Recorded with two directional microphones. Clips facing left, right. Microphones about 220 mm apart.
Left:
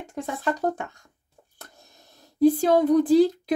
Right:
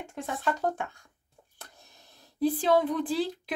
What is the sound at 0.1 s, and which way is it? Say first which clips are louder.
Speech: left 4 dB; 40° left (ahead or behind).